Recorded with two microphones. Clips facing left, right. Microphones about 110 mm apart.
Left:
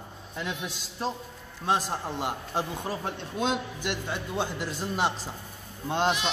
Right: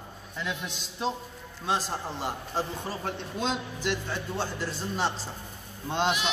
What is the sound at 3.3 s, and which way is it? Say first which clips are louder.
Speech: left 4 dB; 55° left (ahead or behind).